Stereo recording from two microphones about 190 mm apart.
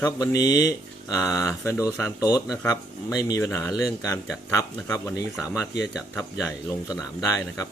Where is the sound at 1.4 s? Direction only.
15° left (ahead or behind).